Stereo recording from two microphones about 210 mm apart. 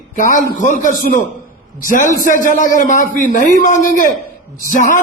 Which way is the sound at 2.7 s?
40° left (ahead or behind).